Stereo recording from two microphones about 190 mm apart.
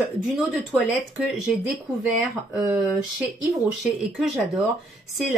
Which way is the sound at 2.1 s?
5° right (ahead or behind).